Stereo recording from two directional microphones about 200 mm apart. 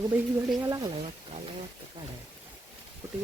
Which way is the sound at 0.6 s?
20° right (ahead or behind).